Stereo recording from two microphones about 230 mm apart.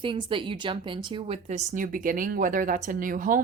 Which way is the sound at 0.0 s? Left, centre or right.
Right.